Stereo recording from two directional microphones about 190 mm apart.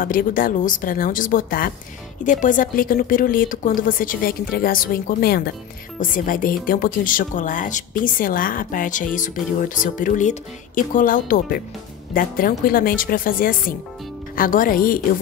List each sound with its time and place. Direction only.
0.0 s speech: 45° left (ahead or behind)